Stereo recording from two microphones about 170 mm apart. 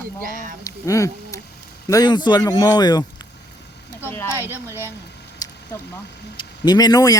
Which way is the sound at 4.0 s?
15° left (ahead or behind).